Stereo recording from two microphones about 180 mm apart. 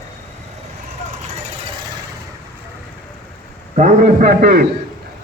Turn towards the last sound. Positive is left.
turn(degrees=-55)  # may be behind; listen again after turning